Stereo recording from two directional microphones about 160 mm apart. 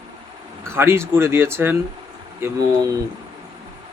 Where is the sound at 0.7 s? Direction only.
15° right (ahead or behind).